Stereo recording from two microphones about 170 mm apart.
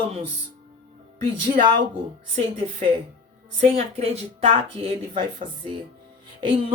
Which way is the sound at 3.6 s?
40° right (ahead or behind).